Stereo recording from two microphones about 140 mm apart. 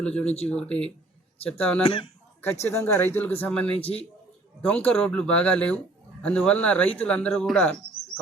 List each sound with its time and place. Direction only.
0.0 s speech: 10° left (ahead or behind)
1.8 s speech: 40° left (ahead or behind)
2.4 s speech: 20° left (ahead or behind)
3.8 s a man's voice: 45° left (ahead or behind)
4.9 s speech: 5° left (ahead or behind)